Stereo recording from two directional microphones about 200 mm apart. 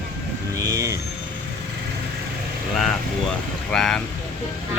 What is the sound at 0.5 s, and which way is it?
Vehicle, 15° right (ahead or behind).